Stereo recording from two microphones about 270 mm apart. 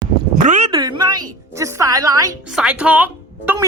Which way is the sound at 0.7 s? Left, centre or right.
Centre.